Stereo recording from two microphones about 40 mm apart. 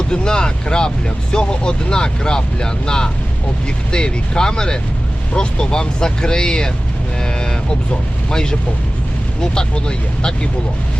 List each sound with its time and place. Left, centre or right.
0.1 s speech: centre
7.2 s a sound: left
8.3 s speech: centre